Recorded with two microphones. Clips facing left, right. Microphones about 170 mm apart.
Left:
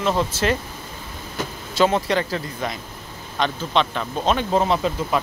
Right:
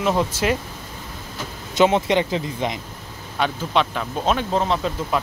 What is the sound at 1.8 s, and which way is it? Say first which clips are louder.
Speech: right 2 dB; 20° right (ahead or behind).